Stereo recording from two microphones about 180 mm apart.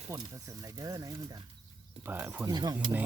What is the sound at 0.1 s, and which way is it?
Speech, 20° right (ahead or behind).